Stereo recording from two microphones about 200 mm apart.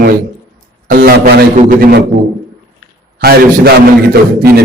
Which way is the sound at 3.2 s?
50° right (ahead or behind).